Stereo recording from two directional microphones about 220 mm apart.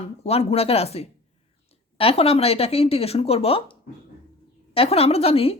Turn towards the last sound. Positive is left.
turn(degrees=25)  # may be behind; listen again after turning